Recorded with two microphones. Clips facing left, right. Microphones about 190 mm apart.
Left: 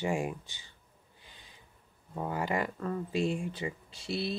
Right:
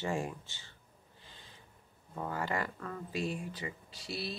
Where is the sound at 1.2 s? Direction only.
15° left (ahead or behind).